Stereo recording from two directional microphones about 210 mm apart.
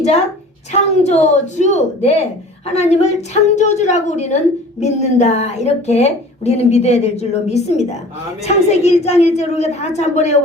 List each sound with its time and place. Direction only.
0.8 s a woman's voice: 30° left (ahead or behind)